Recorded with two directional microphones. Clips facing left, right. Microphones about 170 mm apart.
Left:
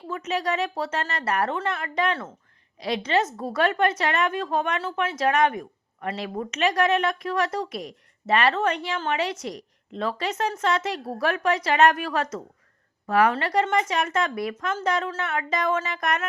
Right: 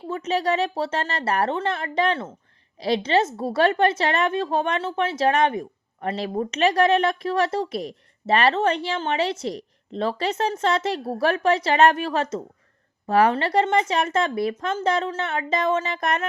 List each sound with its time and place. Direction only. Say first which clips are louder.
0.1 s a woman's voice: right 4 dB; 30° right (ahead or behind)